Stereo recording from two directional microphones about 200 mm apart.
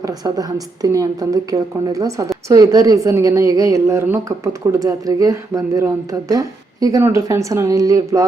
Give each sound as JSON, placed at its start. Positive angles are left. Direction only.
{"t": 0.0, "sound": "a woman's voice", "side_deg": -20}